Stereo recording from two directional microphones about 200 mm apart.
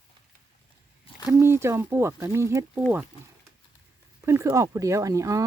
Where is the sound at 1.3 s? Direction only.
10° right (ahead or behind).